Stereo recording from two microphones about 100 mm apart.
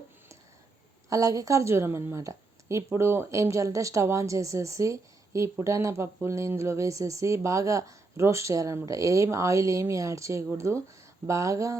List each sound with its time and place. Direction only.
1.1 s a woman's voice: 35° right (ahead or behind)